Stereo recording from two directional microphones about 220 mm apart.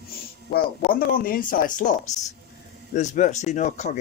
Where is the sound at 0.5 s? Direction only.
45° left (ahead or behind).